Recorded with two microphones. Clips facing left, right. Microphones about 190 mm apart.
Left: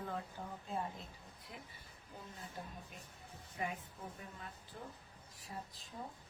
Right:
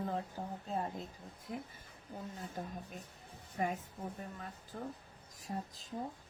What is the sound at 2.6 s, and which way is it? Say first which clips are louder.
Speech: right 6 dB; 45° right (ahead or behind).